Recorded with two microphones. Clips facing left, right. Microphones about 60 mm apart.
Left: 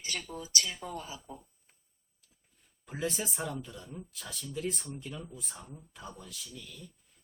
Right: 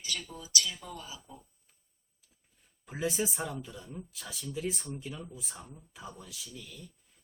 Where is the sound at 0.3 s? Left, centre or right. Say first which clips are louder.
Even; left.